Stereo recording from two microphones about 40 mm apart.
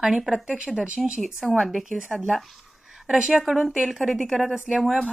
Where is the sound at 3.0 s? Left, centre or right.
Centre.